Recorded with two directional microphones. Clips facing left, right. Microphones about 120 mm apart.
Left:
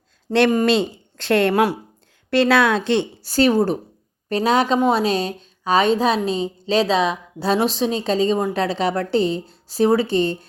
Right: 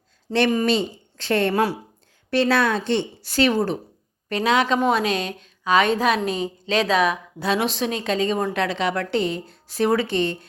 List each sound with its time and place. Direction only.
0.3 s speech: 50° left (ahead or behind)
0.6 s a woman's voice: 90° left
1.1 s a woman's voice: 65° left (ahead or behind)
2.3 s a woman's voice: 85° left
3.2 s a woman's voice: 40° left (ahead or behind)